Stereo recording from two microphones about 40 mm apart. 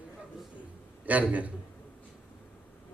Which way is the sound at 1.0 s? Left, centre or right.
Right.